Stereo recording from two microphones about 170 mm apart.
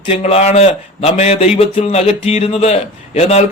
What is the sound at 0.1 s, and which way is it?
Speech, 35° left (ahead or behind).